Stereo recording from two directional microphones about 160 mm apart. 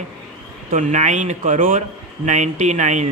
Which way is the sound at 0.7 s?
50° right (ahead or behind).